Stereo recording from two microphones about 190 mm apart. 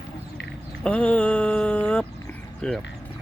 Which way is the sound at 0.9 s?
5° left (ahead or behind).